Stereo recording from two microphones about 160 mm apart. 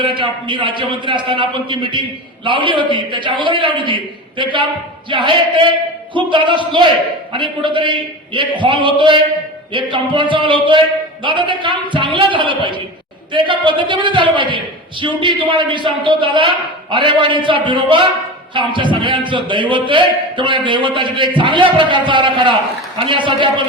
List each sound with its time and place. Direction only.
0.0 s a man's voice: 30° right (ahead or behind)